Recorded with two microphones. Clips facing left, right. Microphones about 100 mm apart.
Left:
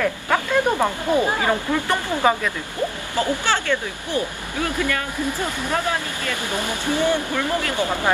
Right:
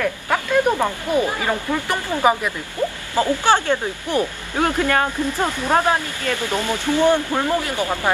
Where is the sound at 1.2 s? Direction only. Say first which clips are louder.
Left 1 dB; 20° left (ahead or behind).